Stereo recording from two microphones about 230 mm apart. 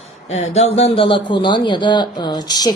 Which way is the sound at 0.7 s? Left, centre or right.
Left.